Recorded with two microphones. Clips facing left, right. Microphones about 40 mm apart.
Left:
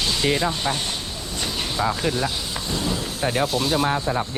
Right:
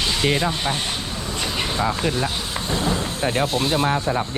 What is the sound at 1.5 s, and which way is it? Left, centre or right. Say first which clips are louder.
Vehicle: right 4 dB; right.